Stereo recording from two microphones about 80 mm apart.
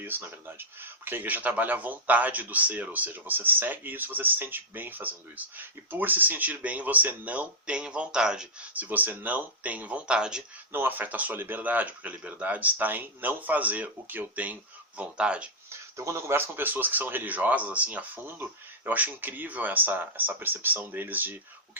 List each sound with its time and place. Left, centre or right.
0.0 s speech: right
10.7 s speech: right
15.7 s speech: right